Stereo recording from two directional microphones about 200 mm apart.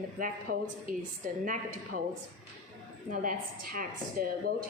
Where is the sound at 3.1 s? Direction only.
45° right (ahead or behind).